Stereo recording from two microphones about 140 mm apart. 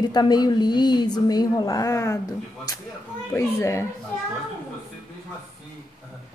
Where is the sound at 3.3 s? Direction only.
20° left (ahead or behind).